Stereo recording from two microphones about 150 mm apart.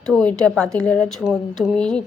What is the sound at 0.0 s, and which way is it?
A woman's voice, 5° left (ahead or behind).